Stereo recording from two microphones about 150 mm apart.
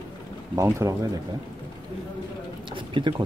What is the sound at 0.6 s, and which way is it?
Speech, 20° right (ahead or behind).